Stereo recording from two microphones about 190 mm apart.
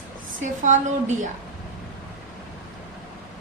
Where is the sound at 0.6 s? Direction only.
40° right (ahead or behind).